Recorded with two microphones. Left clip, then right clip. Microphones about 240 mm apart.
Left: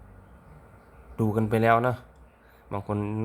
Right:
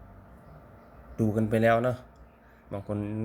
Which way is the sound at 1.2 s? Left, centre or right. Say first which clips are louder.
Left 1 dB; left.